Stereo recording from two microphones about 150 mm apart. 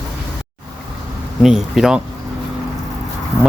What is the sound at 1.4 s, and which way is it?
Speech, 5° right (ahead or behind).